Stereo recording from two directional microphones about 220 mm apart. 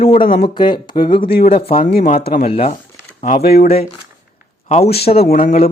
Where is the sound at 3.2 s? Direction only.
40° left (ahead or behind).